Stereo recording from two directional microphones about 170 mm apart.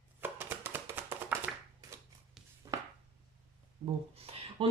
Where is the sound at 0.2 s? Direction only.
10° right (ahead or behind).